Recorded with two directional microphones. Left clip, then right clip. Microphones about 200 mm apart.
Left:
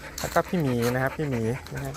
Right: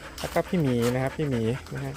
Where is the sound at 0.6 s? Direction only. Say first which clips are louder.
Even; 30° left (ahead or behind).